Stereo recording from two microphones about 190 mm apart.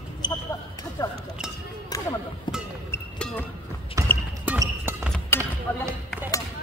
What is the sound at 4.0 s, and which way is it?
Basketball bounce, 15° right (ahead or behind).